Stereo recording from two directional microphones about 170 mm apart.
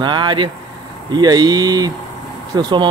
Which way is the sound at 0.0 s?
25° right (ahead or behind).